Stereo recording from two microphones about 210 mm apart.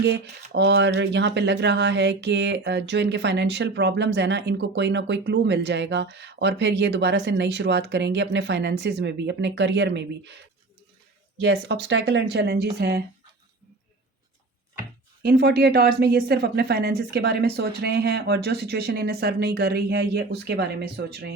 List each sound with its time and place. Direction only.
0.0 s speech: 55° right (ahead or behind)
15.2 s speech: 45° right (ahead or behind)